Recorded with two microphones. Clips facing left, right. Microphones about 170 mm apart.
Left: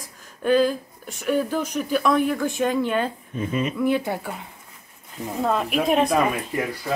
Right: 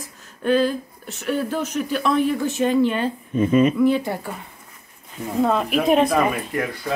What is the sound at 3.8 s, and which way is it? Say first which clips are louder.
Speech: right 3 dB; 10° left (ahead or behind).